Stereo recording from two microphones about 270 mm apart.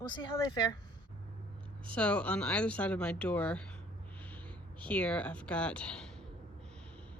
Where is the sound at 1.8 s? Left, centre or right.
Centre.